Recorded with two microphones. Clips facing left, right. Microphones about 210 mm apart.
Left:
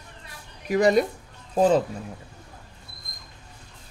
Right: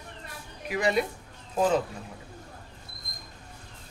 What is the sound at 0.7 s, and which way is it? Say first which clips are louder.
Speech: left 7 dB; 40° left (ahead or behind).